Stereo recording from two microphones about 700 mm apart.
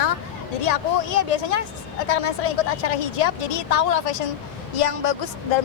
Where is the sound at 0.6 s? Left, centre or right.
Left.